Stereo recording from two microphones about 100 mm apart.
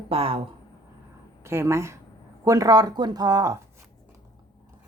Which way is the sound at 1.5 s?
25° right (ahead or behind).